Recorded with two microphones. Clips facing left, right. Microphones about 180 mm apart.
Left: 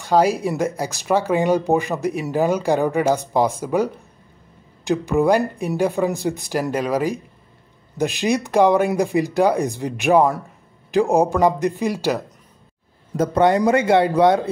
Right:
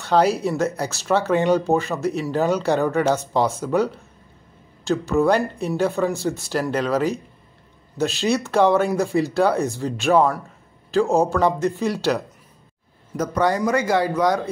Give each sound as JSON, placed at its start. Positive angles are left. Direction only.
{"t": 0.0, "sound": "speech", "side_deg": 10}
{"t": 13.1, "sound": "speech", "side_deg": 25}